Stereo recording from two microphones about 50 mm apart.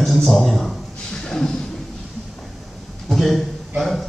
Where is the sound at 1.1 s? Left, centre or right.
Centre.